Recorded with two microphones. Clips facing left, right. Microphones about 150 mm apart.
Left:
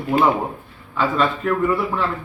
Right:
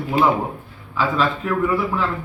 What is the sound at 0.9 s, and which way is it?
A man's voice, centre (ahead or behind).